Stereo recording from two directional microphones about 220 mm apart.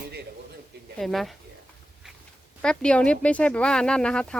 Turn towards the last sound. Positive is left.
turn(degrees=5)  # may be behind; listen again after turning